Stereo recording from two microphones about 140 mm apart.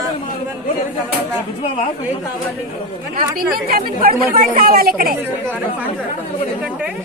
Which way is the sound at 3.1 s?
90° right.